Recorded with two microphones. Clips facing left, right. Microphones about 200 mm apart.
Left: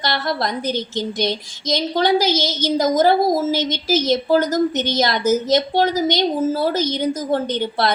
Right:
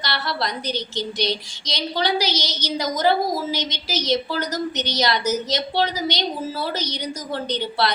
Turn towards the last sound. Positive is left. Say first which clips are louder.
# left 3 dB
turn(degrees=50)  # may be behind; listen again after turning